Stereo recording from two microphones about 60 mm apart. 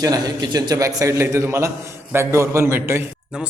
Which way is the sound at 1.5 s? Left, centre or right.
Right.